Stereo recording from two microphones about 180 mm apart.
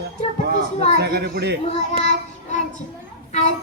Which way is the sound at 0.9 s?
65° right (ahead or behind).